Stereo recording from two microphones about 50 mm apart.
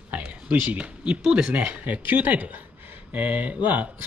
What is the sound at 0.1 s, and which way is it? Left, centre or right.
Speech, right.